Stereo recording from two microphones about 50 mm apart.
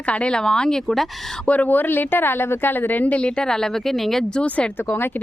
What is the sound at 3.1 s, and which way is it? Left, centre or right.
Speech, left.